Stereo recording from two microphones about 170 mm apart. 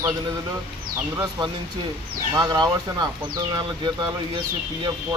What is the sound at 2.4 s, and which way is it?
Speech, 25° right (ahead or behind).